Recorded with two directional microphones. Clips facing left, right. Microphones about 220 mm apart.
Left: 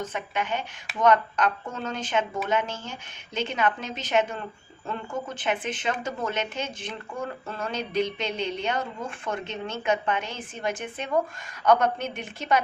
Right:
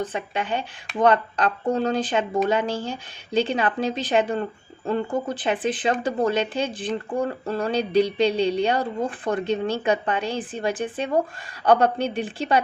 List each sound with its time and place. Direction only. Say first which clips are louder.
0.0 s speech: right 3 dB; 30° right (ahead or behind)